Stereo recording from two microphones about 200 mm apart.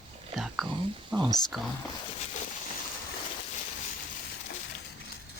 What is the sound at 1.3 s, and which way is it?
Speech, centre (ahead or behind).